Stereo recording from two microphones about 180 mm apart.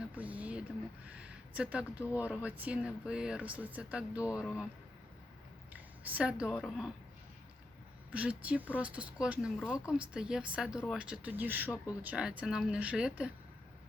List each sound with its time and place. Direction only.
0.0 s a sound: 10° right (ahead or behind)
1.0 s speech: 5° right (ahead or behind)
5.7 s speech: 10° right (ahead or behind)
8.1 s speech: 5° right (ahead or behind)